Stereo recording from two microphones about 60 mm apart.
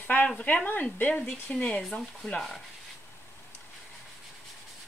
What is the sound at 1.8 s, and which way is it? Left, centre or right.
Speech, centre.